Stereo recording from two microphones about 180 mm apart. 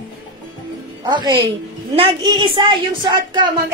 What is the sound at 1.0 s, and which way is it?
A woman's voice, 25° right (ahead or behind).